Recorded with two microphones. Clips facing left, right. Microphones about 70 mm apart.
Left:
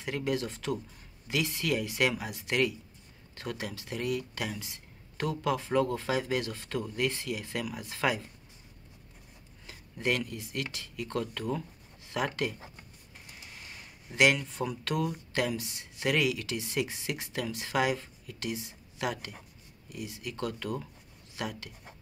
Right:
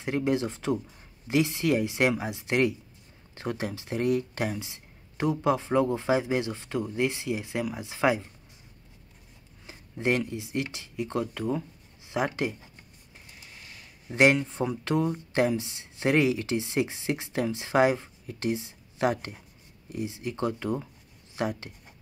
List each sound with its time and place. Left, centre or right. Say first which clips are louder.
0.0 s speech: right 5 dB; right
4.6 s speech: right 5 dB; right
9.7 s speech: right 4 dB; right
14.1 s speech: right 4 dB; right